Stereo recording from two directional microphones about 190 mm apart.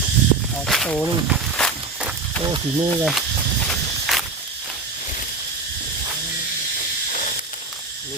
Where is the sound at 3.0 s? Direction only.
Centre (ahead or behind).